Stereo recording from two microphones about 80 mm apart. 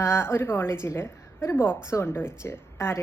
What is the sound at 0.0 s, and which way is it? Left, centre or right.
A woman's voice, left.